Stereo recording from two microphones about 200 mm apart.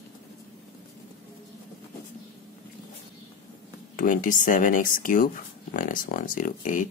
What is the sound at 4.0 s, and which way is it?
Speech, 40° left (ahead or behind).